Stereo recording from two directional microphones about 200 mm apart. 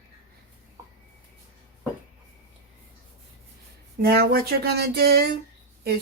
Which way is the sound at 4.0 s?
50° right (ahead or behind).